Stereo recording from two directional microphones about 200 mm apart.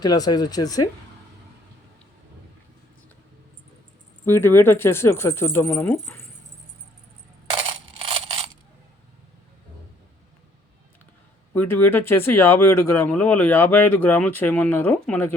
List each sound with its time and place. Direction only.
0.0 s speech: 20° left (ahead or behind)
4.3 s speech: 10° left (ahead or behind)
8.0 s a sound: 30° right (ahead or behind)
11.5 s speech: 10° left (ahead or behind)